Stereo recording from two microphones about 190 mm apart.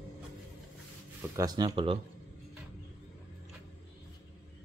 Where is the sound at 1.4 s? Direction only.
20° right (ahead or behind).